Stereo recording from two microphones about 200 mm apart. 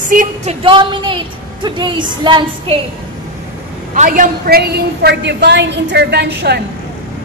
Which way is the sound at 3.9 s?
40° right (ahead or behind).